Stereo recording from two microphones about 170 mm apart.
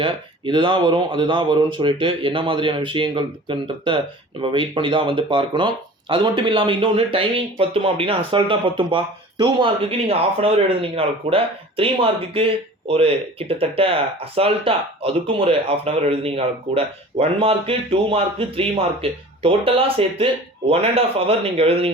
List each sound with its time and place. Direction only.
0.0 s speech: 30° right (ahead or behind)